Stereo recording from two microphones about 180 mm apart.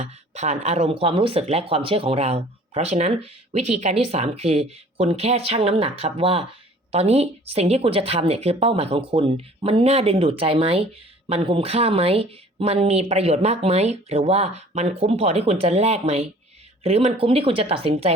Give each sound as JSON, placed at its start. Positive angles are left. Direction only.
{"t": 0.0, "sound": "speech", "side_deg": -40}